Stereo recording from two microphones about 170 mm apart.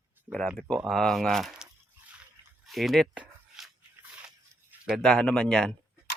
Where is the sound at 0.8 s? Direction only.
Centre (ahead or behind).